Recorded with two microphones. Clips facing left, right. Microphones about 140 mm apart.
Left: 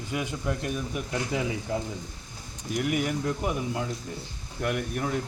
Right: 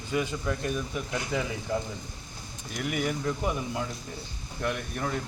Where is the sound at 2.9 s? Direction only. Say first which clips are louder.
Right 2 dB; 10° left (ahead or behind).